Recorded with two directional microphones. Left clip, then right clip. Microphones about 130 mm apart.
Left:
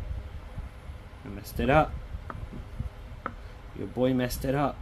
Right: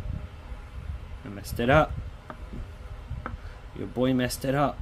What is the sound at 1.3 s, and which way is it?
Speech, 20° right (ahead or behind).